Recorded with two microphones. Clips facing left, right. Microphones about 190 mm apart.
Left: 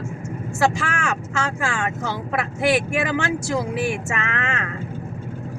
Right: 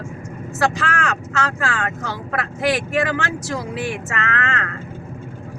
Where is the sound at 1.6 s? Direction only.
10° left (ahead or behind).